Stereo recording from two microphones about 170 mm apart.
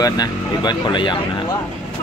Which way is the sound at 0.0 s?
25° left (ahead or behind).